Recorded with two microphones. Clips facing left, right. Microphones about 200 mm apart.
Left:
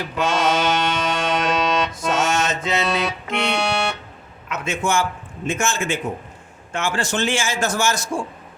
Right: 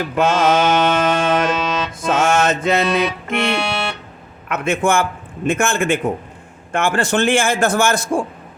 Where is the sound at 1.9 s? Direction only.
55° right (ahead or behind).